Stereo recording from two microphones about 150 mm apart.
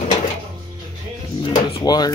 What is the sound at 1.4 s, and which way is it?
Speech, 35° left (ahead or behind).